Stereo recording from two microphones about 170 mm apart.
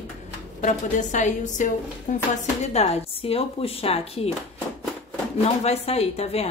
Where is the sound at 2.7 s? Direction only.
35° left (ahead or behind).